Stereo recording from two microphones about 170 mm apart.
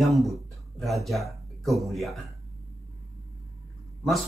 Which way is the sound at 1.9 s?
Centre (ahead or behind).